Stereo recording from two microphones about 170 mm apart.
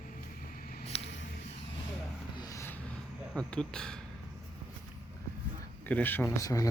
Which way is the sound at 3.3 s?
5° left (ahead or behind).